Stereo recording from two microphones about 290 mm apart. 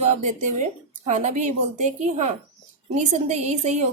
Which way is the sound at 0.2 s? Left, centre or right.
Right.